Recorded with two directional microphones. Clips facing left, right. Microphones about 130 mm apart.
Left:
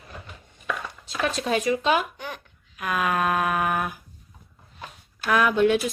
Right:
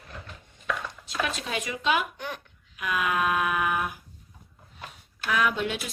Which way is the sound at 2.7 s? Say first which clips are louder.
Left 2 dB; 40° left (ahead or behind).